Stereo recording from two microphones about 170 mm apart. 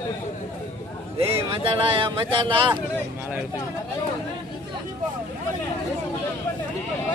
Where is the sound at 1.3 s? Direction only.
30° right (ahead or behind).